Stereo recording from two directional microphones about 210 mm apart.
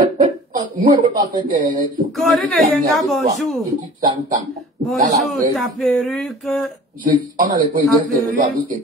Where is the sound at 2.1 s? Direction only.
Centre (ahead or behind).